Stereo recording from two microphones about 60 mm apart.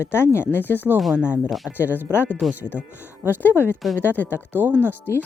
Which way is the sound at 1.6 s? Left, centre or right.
Left.